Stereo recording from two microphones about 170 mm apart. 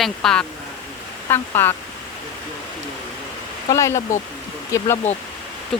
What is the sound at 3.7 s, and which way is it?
Speech, 15° left (ahead or behind).